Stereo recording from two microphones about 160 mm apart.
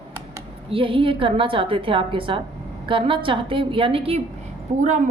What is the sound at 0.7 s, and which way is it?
A woman's voice, 35° right (ahead or behind).